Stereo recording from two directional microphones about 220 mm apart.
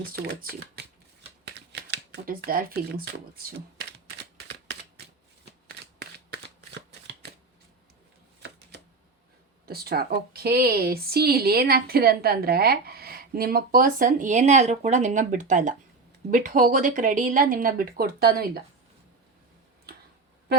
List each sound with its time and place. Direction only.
0.0 s a woman's voice: 45° right (ahead or behind)
1.5 s a sound: 50° right (ahead or behind)
5.6 s shuffling cards: 45° right (ahead or behind)
8.4 s shuffling cards: 50° right (ahead or behind)
9.6 s a woman's voice: 45° right (ahead or behind)